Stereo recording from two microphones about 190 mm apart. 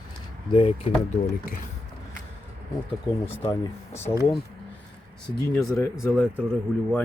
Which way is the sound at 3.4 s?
10° left (ahead or behind).